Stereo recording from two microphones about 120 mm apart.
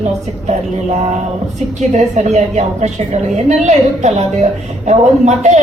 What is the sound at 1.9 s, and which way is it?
A woman's voice, 70° right (ahead or behind).